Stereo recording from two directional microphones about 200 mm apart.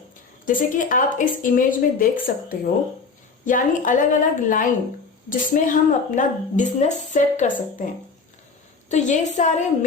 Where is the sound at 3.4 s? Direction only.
40° left (ahead or behind).